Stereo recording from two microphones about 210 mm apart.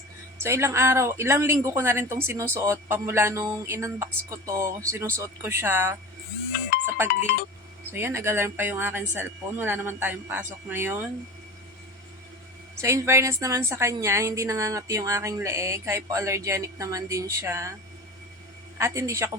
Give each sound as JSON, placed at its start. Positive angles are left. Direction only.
{"t": 0.4, "sound": "a woman's voice", "side_deg": -10}
{"t": 6.8, "sound": "music", "side_deg": -10}
{"t": 7.1, "sound": "speech", "side_deg": 45}
{"t": 7.9, "sound": "a woman's voice", "side_deg": -10}
{"t": 12.8, "sound": "a woman's voice", "side_deg": -15}
{"t": 18.8, "sound": "a woman's voice", "side_deg": -15}